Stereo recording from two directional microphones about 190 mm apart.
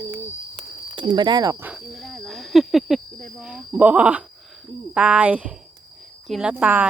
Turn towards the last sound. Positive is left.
turn(degrees=-10)  # may be behind; listen again after turning